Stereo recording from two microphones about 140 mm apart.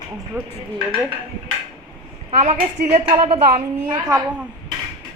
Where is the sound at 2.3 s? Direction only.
50° right (ahead or behind).